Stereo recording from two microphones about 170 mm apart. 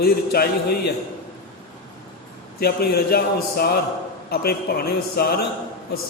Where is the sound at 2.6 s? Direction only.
65° left (ahead or behind).